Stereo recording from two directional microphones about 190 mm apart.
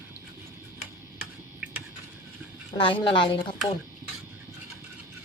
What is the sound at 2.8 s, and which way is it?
Speech, 25° left (ahead or behind).